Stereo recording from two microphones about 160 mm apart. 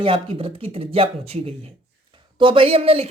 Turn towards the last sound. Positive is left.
turn(degrees=-35)  # may be behind; listen again after turning